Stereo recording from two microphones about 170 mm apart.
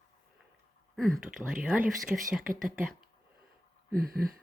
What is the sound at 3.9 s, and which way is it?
Speech, 60° right (ahead or behind).